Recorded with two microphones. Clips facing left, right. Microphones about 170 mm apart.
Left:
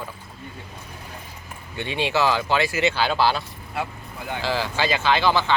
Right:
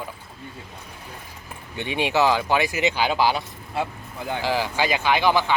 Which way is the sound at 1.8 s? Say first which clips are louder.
Right 1 dB; 15° right (ahead or behind).